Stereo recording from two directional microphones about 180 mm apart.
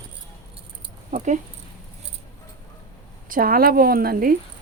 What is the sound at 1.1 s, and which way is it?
Speech, 45° right (ahead or behind).